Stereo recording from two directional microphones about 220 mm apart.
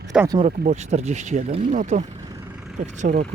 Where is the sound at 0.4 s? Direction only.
30° right (ahead or behind).